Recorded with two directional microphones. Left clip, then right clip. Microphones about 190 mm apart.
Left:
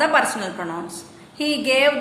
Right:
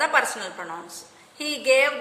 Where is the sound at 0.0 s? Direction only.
20° right (ahead or behind).